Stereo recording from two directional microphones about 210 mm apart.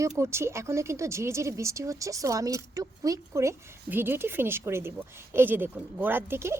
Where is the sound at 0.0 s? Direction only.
15° right (ahead or behind).